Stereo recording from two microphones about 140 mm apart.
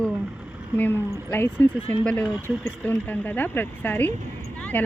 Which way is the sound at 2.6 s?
10° left (ahead or behind).